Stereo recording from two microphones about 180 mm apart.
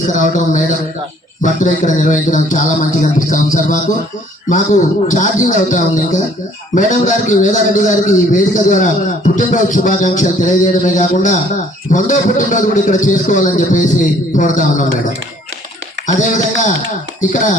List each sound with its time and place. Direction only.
0.1 s a man's voice: 45° left (ahead or behind)
16.0 s a man's voice: 45° left (ahead or behind)